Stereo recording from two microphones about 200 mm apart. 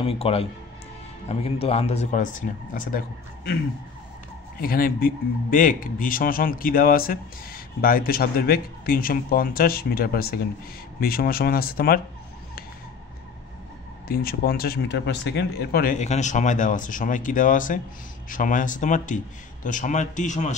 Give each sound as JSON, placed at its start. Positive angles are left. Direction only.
{"t": 0.0, "sound": "speech", "side_deg": 30}
{"t": 4.6, "sound": "speech", "side_deg": 45}
{"t": 14.0, "sound": "speech", "side_deg": 50}